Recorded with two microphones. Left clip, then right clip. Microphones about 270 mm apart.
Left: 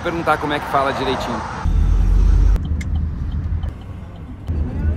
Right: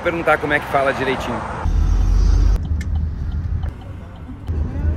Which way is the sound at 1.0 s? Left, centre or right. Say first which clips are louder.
Even; centre.